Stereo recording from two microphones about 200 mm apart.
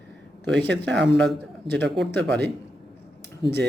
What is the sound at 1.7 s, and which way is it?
Speech, 60° right (ahead or behind).